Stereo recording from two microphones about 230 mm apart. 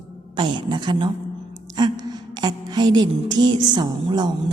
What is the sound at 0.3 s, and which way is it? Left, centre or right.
A woman's voice, right.